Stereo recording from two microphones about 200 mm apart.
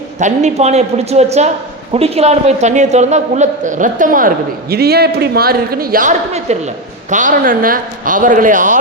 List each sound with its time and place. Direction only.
0.2 s a man's voice: 35° right (ahead or behind)